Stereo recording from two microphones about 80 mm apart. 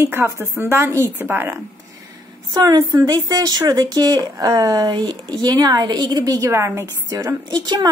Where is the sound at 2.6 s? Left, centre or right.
Right.